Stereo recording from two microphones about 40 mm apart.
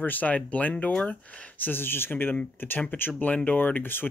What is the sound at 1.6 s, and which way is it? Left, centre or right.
Speech, left.